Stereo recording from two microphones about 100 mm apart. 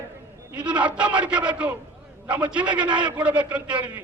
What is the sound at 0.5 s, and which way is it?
A man's voice, 10° right (ahead or behind).